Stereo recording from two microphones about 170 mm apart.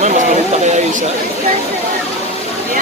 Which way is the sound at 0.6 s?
45° right (ahead or behind).